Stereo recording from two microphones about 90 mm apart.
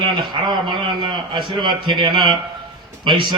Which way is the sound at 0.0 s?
60° right (ahead or behind).